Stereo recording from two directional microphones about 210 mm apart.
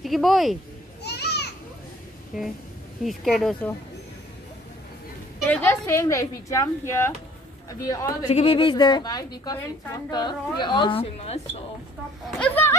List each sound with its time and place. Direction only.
0.0 s speech: centre (ahead or behind)
1.0 s children playing: 55° left (ahead or behind)
3.0 s speech: centre (ahead or behind)
5.4 s a woman's voice: 10° left (ahead or behind)
8.3 s a woman's voice: 30° left (ahead or behind)
12.3 s speech: 5° left (ahead or behind)